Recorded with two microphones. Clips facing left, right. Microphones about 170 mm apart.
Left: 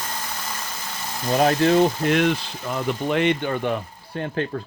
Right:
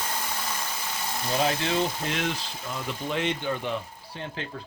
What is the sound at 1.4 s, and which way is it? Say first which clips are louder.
Speech: left 9 dB; 55° left (ahead or behind).